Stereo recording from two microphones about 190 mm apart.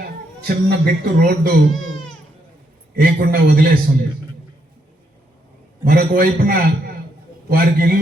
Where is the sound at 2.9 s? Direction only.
55° right (ahead or behind).